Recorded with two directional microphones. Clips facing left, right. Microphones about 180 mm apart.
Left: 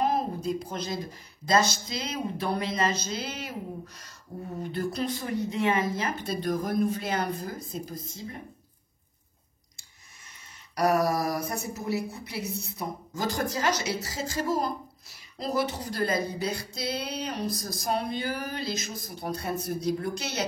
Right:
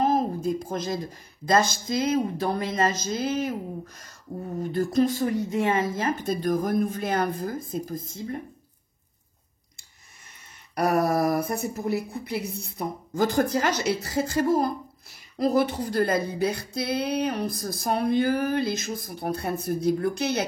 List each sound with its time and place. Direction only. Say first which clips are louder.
0.0 s a woman's voice: right 4 dB; 45° right (ahead or behind)
10.7 s speech: right 2 dB; 55° right (ahead or behind)